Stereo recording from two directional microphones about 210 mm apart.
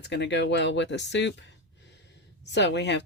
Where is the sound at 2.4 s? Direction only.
55° left (ahead or behind).